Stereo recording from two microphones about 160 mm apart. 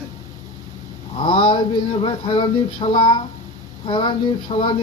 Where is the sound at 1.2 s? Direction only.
30° left (ahead or behind).